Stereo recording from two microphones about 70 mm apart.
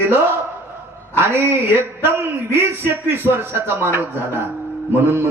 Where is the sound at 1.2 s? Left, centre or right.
Right.